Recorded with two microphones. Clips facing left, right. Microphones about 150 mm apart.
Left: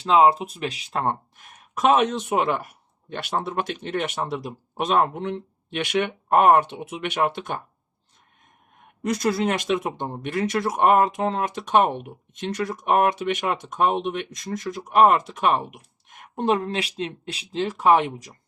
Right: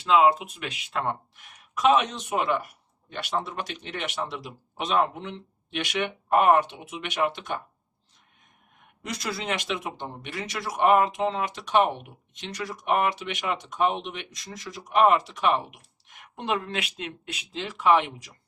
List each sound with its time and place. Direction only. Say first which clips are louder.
0.0 s speech: left 3 dB; 35° left (ahead or behind); by 7.6 s 55° left (ahead or behind)
9.0 s speech: left 9 dB; 50° left (ahead or behind)